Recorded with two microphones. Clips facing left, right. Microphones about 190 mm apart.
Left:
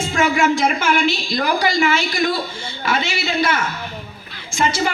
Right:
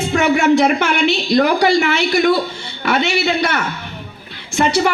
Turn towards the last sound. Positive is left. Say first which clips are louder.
# right 4 dB
turn(degrees=-65)  # may be behind; listen again after turning